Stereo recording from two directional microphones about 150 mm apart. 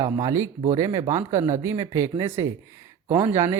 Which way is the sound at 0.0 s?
25° right (ahead or behind).